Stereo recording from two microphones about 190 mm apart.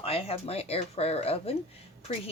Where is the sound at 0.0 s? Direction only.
30° left (ahead or behind).